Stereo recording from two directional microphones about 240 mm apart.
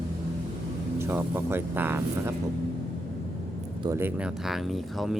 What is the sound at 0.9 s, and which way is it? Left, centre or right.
Speech, centre.